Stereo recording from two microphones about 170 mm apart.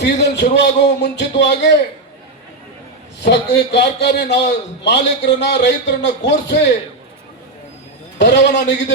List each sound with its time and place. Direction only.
0.0 s a man's voice: 85° left
3.2 s a man's voice: 85° left
8.2 s a man's voice: 90° left